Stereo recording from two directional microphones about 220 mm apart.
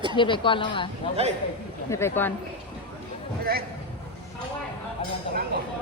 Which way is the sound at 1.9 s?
10° left (ahead or behind).